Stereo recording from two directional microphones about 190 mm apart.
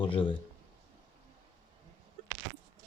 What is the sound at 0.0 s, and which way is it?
Speech, 25° left (ahead or behind).